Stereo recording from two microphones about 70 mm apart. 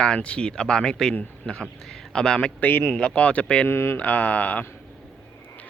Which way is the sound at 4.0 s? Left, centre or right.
Left.